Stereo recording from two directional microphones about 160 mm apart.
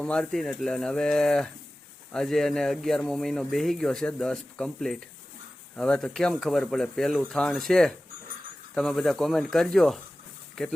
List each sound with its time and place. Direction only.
0.0 s speech: 5° left (ahead or behind)